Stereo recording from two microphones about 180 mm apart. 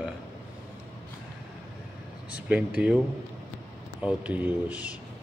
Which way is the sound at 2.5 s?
5° right (ahead or behind).